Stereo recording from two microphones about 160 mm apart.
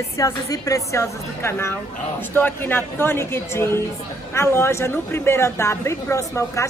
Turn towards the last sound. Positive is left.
turn(degrees=20)  # may be behind; listen again after turning